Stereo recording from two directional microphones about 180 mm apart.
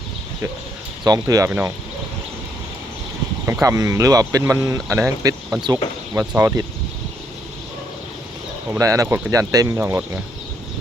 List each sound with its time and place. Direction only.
1.0 s speech: 20° right (ahead or behind)
1.5 s speech: 10° right (ahead or behind)
3.4 s speech: 15° right (ahead or behind)
8.7 s speech: 20° right (ahead or behind)